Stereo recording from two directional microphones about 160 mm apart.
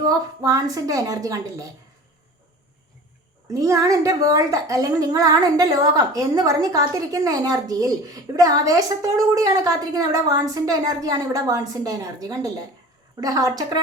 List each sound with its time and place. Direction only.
0.0 s a woman's voice: 25° right (ahead or behind)
3.5 s a woman's voice: 20° right (ahead or behind)